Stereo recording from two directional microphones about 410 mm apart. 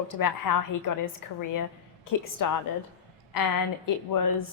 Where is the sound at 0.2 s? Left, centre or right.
Left.